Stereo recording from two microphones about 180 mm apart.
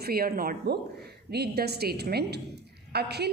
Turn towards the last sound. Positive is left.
turn(degrees=-65)  # may be behind; listen again after turning